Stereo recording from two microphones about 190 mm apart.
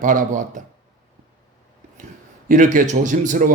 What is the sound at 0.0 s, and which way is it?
Speech, 45° right (ahead or behind).